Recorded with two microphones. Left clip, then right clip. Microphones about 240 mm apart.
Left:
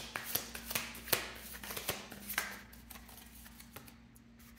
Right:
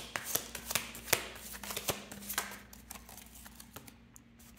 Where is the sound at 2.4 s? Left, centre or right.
Right.